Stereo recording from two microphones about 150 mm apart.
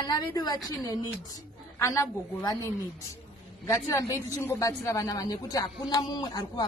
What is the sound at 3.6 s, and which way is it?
Speech, 20° left (ahead or behind).